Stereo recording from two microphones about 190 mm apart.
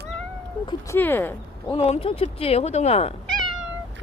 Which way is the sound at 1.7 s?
30° left (ahead or behind).